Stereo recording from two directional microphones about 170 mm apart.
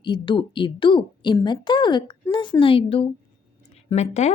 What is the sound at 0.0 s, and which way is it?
A woman's voice, 30° left (ahead or behind).